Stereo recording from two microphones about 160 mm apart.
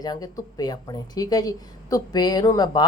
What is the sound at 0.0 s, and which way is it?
A woman's voice, 25° left (ahead or behind).